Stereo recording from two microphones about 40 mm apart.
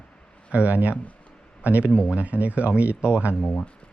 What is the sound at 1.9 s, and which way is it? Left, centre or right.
Speech, centre.